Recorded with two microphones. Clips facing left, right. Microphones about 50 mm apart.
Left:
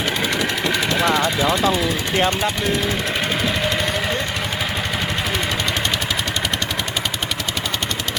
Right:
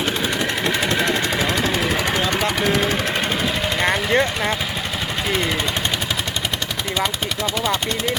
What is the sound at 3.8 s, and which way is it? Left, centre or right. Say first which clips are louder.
Vehicle: right 4 dB; right.